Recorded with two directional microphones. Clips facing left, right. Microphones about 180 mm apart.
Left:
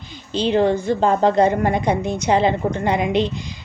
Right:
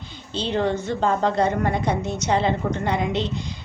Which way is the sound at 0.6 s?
35° left (ahead or behind).